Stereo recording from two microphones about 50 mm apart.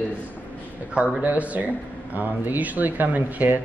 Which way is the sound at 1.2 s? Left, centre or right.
Right.